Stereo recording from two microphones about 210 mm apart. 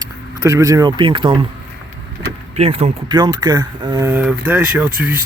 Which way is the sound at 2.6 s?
30° right (ahead or behind).